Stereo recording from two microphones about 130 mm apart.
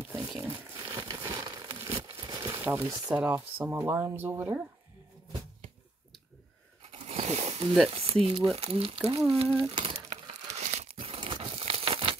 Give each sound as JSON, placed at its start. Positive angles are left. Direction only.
{"t": 0.5, "sound": "crumpling", "side_deg": -35}
{"t": 1.8, "sound": "a sound", "side_deg": -25}
{"t": 2.6, "sound": "speech", "side_deg": -15}
{"t": 6.8, "sound": "zipper", "side_deg": -45}
{"t": 7.9, "sound": "speech", "side_deg": -50}
{"t": 9.3, "sound": "crumpling", "side_deg": -45}